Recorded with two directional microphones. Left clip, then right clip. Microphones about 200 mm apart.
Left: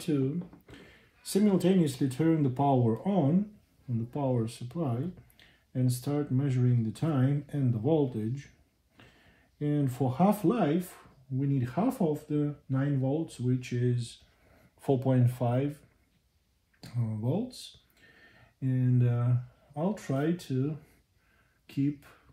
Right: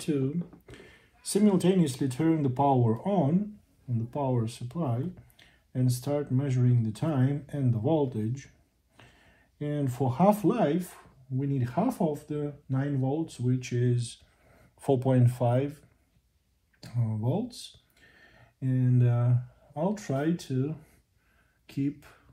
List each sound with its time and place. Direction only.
1.2 s speech: 30° right (ahead or behind)
16.8 s speech: 25° right (ahead or behind)